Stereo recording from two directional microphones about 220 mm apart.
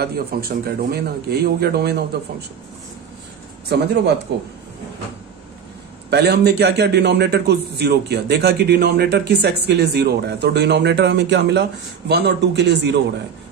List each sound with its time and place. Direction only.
0.0 s a man's voice: 45° right (ahead or behind)
3.6 s a man's voice: 50° right (ahead or behind)
6.0 s a man's voice: 50° right (ahead or behind)